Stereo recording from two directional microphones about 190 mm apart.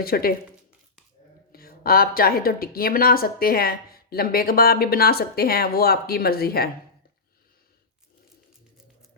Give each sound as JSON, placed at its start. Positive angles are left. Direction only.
{"t": 0.0, "sound": "speech", "side_deg": 50}
{"t": 1.5, "sound": "speech", "side_deg": 50}